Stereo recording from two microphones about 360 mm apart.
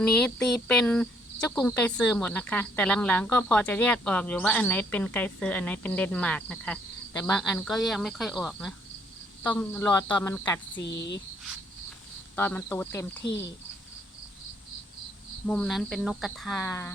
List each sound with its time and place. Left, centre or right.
0.0 s speech: centre
10.8 s speech: left
12.4 s speech: centre
15.4 s speech: centre